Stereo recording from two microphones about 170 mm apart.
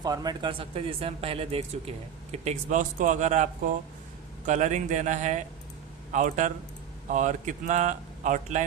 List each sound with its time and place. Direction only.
0.0 s speech: 25° right (ahead or behind); by 8.6 s 45° right (ahead or behind)